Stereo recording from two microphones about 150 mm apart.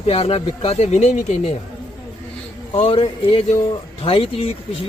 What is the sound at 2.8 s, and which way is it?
Speech, 40° left (ahead or behind).